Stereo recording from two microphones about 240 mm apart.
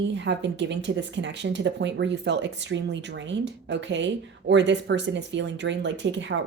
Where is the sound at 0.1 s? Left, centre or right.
Right.